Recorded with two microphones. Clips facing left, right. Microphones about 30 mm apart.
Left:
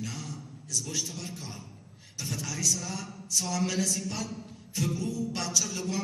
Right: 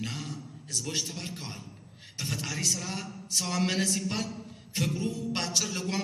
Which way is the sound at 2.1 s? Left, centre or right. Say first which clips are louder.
Right 1 dB; right.